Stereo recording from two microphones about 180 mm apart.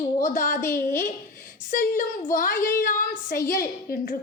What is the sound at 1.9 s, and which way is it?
A woman's voice, 50° left (ahead or behind).